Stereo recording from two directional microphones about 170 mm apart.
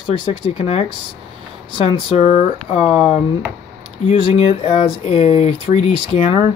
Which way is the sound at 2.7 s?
Centre (ahead or behind).